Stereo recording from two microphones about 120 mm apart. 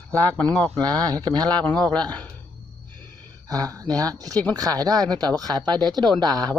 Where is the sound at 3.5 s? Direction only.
30° right (ahead or behind).